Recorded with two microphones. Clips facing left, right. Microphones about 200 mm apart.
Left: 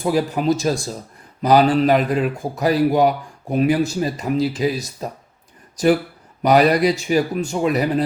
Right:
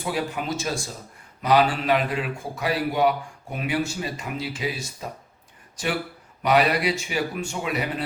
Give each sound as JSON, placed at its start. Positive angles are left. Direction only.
{"t": 0.0, "sound": "speech", "side_deg": 40}